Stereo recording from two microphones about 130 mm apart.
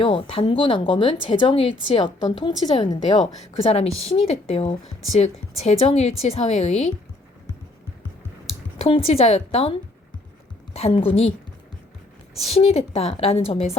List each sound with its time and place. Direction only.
0.0 s a woman's voice: 45° left (ahead or behind)
3.6 s a woman's voice: 50° left (ahead or behind)
8.8 s speech: 50° left (ahead or behind)
10.8 s speech: 50° left (ahead or behind)
12.5 s speech: 50° left (ahead or behind)